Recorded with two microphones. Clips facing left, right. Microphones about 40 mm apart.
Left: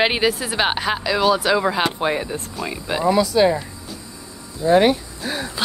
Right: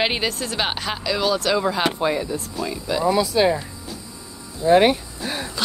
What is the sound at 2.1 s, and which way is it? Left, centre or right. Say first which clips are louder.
Speech: even; left.